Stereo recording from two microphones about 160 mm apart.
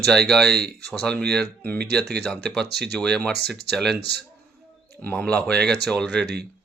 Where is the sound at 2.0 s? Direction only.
85° right.